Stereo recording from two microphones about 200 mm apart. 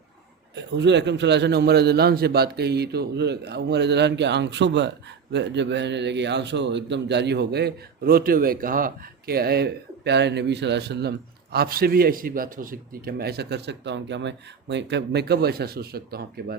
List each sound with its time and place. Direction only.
0.5 s a man's voice: 60° right (ahead or behind)